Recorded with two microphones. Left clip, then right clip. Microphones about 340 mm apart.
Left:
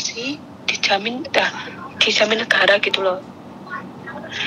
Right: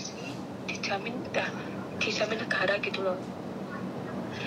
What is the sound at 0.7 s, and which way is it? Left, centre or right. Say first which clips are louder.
A woman's voice: left 13 dB; left.